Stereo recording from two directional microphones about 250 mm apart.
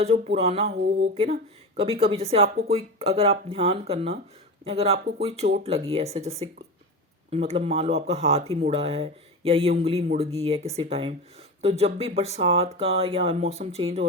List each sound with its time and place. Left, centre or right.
0.0 s speech: right